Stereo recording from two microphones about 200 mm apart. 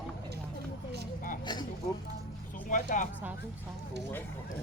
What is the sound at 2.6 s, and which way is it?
Speech, 40° left (ahead or behind).